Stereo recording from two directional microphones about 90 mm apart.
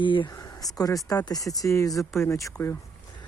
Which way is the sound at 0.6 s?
40° left (ahead or behind).